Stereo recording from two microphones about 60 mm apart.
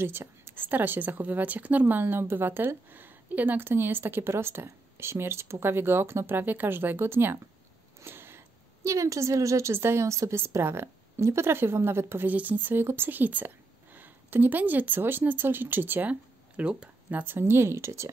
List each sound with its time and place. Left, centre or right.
0.0 s a woman's voice: right
8.0 s a sound: right
8.8 s a woman's voice: right
10.3 s speech: right
12.3 s a woman's voice: right
17.2 s speech: right